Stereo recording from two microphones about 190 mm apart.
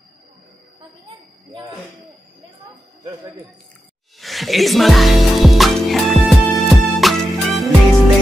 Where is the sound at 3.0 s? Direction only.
20° right (ahead or behind).